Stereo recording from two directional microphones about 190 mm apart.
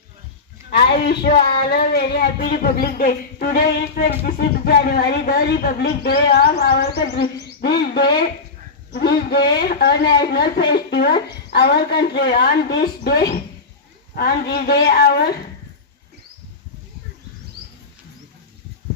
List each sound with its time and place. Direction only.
0.7 s speech: 55° left (ahead or behind)